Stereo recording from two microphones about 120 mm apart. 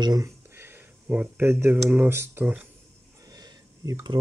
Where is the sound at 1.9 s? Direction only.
20° right (ahead or behind).